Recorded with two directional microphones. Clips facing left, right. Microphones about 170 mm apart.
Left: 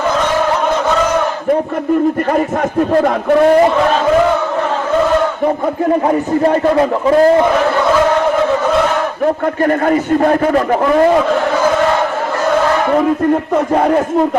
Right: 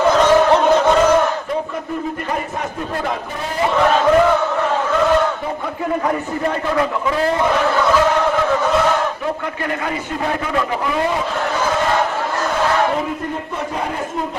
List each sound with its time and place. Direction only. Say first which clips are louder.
2.6 s a man's voice: left 11 dB; 55° left (ahead or behind)
6.4 s a man's voice: left 7 dB; 35° left (ahead or behind)
9.2 s a man's voice: left 9 dB; 50° left (ahead or behind)